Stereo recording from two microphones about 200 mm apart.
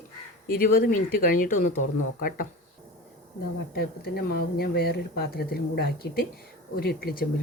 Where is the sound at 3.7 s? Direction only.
50° left (ahead or behind).